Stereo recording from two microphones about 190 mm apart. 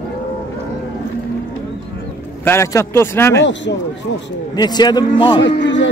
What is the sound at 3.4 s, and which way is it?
Speech, 75° left (ahead or behind).